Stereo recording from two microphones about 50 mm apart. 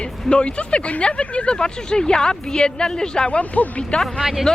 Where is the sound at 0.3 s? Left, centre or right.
Left.